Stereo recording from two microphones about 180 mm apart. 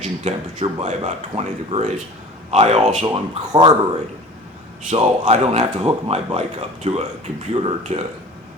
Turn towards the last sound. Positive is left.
turn(degrees=-35)  # may be behind; listen again after turning